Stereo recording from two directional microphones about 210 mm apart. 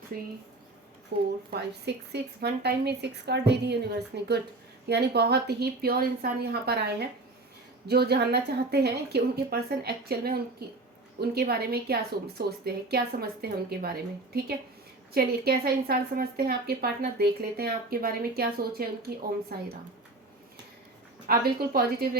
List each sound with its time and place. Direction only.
0.1 s a woman's voice: 45° right (ahead or behind)
15.1 s a woman's voice: 45° right (ahead or behind)
21.2 s a woman's voice: 45° right (ahead or behind)